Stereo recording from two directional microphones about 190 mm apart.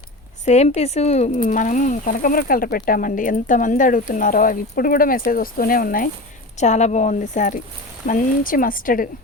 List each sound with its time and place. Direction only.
0.4 s speech: 35° left (ahead or behind)
6.6 s speech: 35° left (ahead or behind)